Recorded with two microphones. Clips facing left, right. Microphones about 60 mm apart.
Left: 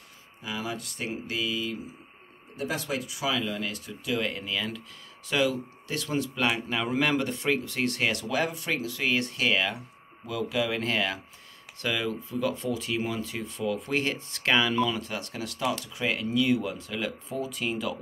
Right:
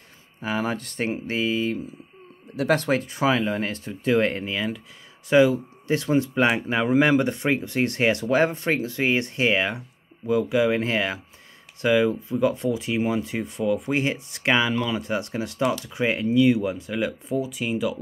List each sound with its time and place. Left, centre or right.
0.4 s speech: right
2.7 s speech: right
5.3 s speech: right; by 17.9 s centre